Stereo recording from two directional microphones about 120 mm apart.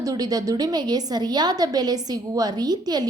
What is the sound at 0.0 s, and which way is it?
A woman's voice, 30° right (ahead or behind).